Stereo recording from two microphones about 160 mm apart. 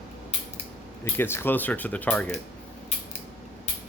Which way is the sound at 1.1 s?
15° left (ahead or behind).